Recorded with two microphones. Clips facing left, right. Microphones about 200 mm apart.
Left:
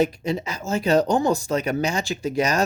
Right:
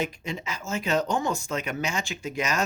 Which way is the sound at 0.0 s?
35° left (ahead or behind).